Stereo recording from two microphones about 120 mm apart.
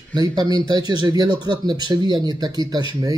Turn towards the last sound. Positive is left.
turn(degrees=-35)  # may be behind; listen again after turning